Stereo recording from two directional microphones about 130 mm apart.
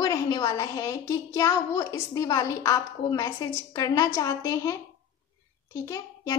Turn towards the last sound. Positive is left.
turn(degrees=25)  # may be behind; listen again after turning